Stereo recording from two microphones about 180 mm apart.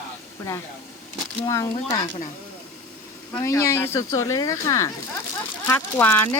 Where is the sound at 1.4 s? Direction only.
15° left (ahead or behind).